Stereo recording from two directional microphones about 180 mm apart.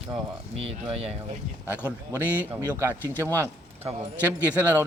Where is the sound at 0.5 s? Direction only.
30° right (ahead or behind).